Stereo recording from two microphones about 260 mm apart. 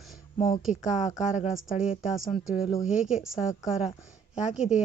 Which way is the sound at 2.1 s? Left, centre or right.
Centre.